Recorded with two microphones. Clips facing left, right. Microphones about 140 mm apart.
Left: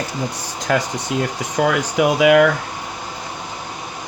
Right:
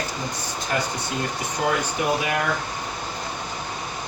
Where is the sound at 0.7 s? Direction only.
90° left.